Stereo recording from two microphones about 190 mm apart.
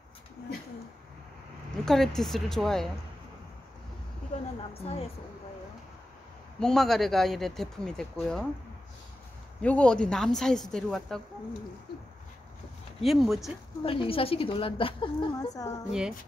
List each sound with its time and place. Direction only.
1.9 s speech: centre (ahead or behind)
4.3 s speech: 40° left (ahead or behind)
6.6 s speech: centre (ahead or behind)
9.6 s speech: 5° left (ahead or behind)
13.0 s speech: centre (ahead or behind)
13.8 s a woman's voice: 30° left (ahead or behind)